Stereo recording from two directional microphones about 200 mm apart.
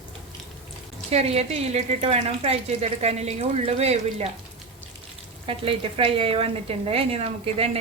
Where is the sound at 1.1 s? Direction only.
30° right (ahead or behind).